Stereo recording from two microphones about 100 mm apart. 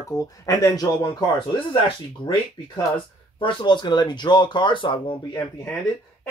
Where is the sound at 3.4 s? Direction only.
55° left (ahead or behind).